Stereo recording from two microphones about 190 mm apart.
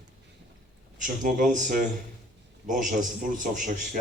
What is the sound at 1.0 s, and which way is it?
A man's voice, 45° right (ahead or behind).